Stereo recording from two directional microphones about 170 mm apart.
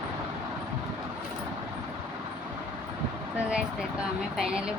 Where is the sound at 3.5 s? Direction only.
5° right (ahead or behind).